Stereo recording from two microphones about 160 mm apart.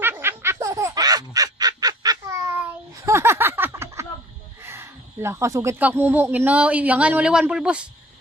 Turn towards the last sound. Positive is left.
turn(degrees=-5)  # may be behind; listen again after turning